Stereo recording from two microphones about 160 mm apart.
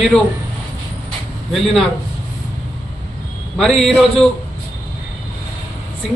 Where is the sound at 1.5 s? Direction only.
Centre (ahead or behind).